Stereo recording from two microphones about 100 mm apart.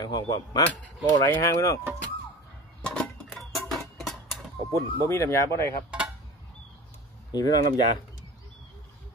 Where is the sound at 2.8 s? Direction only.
10° left (ahead or behind).